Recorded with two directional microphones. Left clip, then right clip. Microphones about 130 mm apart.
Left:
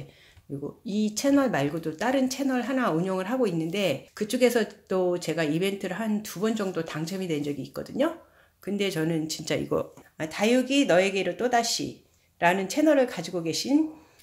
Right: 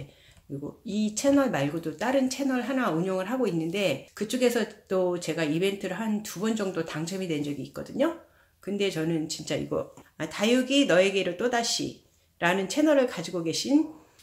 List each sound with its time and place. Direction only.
0.8 s speech: 45° left (ahead or behind)
10.1 s speech: 25° left (ahead or behind)